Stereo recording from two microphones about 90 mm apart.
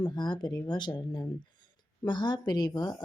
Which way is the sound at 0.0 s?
55° left (ahead or behind).